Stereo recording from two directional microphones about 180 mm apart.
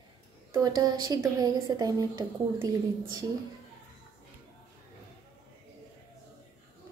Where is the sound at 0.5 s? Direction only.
20° right (ahead or behind).